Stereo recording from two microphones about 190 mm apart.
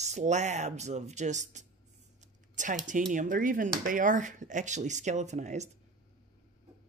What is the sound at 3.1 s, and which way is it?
Speech, 45° right (ahead or behind).